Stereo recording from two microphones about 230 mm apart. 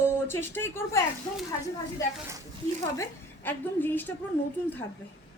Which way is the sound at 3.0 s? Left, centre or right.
Centre.